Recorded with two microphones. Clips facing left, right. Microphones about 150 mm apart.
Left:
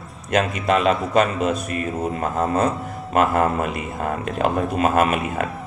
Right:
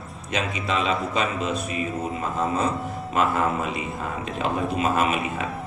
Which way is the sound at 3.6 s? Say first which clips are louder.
Left 4 dB; 55° left (ahead or behind).